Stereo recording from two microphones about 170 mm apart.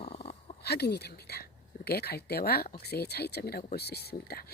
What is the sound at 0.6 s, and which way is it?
Speech, 70° left (ahead or behind).